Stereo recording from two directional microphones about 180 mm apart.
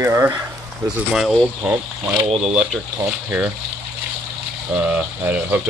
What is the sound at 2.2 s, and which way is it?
Speech, 35° right (ahead or behind).